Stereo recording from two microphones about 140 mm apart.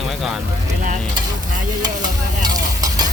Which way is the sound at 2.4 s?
25° right (ahead or behind).